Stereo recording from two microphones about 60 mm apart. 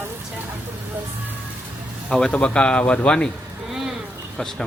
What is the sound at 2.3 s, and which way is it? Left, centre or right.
Speech, centre.